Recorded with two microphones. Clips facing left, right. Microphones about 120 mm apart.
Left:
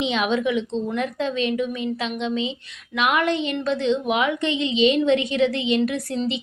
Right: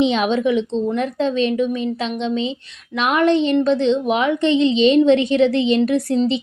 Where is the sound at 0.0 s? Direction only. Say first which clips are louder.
Right 5 dB; 35° right (ahead or behind).